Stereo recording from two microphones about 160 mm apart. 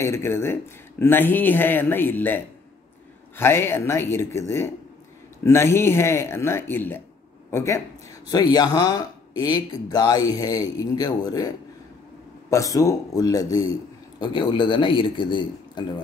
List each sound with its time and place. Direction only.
0.0 s speech: 15° left (ahead or behind)
12.4 s a man's voice: 20° left (ahead or behind)